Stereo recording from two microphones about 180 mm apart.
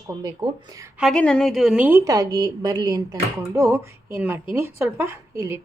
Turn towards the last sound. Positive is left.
turn(degrees=-15)  # may be behind; listen again after turning